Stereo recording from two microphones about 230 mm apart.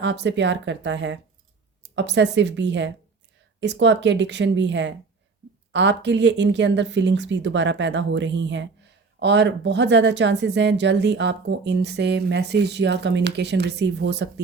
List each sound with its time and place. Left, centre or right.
0.0 s speech: right